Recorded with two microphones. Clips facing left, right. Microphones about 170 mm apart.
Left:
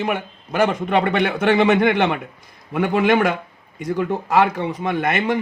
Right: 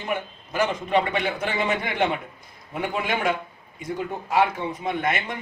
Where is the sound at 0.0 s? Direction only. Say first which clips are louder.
Left 5 dB; 60° left (ahead or behind).